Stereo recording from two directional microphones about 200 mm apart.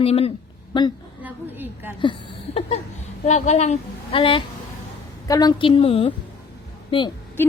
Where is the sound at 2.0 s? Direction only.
25° left (ahead or behind).